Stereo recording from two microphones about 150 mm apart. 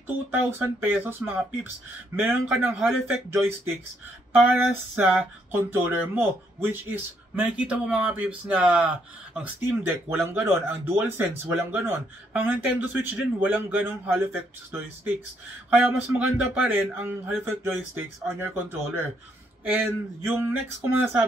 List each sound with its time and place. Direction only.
0.0 s speech: 15° right (ahead or behind)